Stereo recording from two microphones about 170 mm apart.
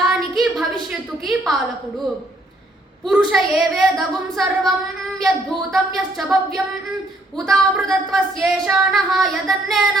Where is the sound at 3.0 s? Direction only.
Centre (ahead or behind).